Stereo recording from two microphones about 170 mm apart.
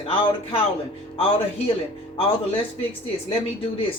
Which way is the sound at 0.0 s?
35° left (ahead or behind).